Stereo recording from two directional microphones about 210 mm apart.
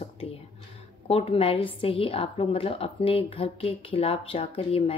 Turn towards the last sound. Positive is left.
turn(degrees=25)  # may be behind; listen again after turning